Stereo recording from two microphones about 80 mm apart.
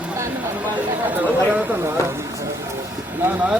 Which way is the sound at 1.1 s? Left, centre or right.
Right.